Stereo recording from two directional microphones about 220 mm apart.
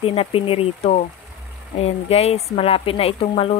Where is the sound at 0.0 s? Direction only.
25° left (ahead or behind).